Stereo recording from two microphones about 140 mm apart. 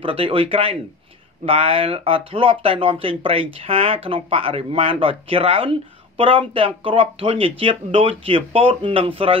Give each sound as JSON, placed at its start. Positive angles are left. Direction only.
{"t": 0.0, "sound": "speech", "side_deg": -40}